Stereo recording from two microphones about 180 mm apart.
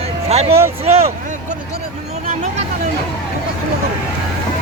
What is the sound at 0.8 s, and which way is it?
Speech, 35° right (ahead or behind).